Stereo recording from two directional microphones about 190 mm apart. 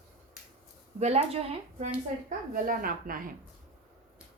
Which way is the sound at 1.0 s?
35° right (ahead or behind).